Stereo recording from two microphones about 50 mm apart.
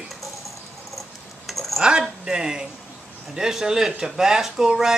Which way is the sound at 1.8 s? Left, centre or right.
Centre.